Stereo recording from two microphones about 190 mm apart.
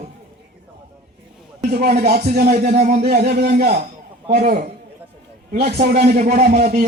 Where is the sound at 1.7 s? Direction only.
50° right (ahead or behind).